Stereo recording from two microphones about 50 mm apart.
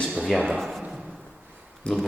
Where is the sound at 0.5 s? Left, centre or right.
Centre.